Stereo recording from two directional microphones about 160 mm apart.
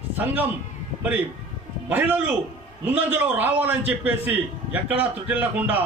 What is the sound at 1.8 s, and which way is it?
A man's voice, 10° right (ahead or behind).